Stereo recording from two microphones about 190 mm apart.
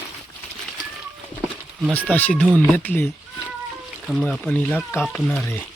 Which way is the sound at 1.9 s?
10° left (ahead or behind).